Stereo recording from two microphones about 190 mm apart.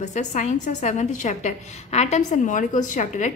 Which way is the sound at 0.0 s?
40° left (ahead or behind).